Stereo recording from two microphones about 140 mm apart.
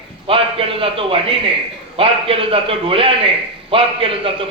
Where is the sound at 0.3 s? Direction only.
40° right (ahead or behind).